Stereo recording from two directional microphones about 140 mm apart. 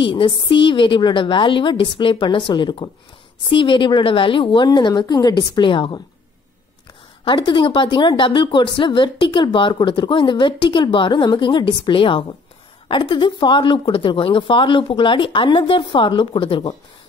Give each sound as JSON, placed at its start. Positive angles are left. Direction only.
{"t": 0.0, "sound": "speech", "side_deg": 35}
{"t": 7.2, "sound": "speech", "side_deg": 35}